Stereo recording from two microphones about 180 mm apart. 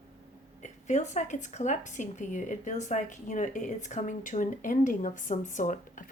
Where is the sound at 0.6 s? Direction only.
40° left (ahead or behind).